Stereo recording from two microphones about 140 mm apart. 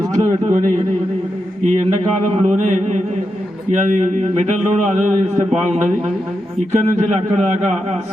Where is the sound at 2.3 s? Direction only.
55° right (ahead or behind).